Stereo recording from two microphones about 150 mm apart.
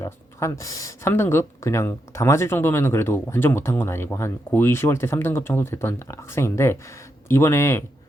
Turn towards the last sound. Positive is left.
turn(degrees=15)  # may be behind; listen again after turning